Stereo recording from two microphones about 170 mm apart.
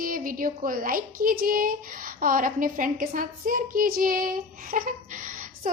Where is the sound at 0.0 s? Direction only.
55° right (ahead or behind).